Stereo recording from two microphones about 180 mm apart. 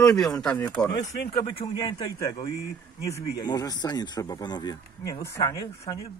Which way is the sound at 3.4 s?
20° left (ahead or behind).